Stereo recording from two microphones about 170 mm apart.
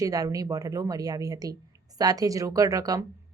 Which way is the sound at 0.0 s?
20° right (ahead or behind).